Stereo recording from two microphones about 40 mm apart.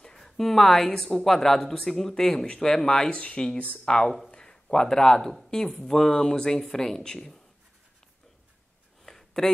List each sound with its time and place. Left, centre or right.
0.2 s a woman's voice: centre
3.1 s a man's voice: left
9.0 s a sound: centre